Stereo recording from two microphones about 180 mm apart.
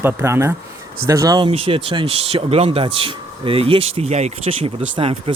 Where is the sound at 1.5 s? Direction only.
30° right (ahead or behind).